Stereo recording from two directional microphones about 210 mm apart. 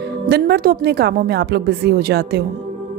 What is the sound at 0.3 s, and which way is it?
A woman's voice, 50° right (ahead or behind).